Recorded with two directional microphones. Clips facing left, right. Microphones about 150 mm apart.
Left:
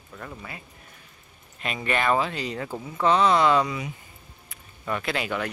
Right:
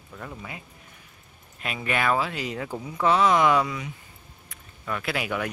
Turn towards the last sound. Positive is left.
turn(degrees=-10)  # may be behind; listen again after turning